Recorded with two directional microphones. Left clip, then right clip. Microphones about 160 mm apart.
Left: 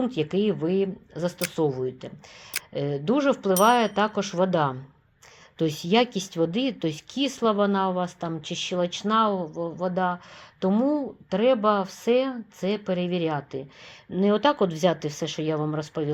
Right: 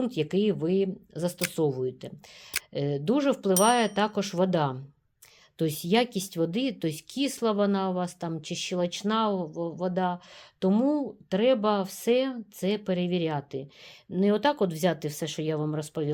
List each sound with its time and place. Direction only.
0.0 s speech: 25° right (ahead or behind)